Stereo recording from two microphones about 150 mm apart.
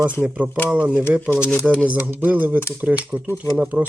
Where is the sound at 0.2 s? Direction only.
10° right (ahead or behind).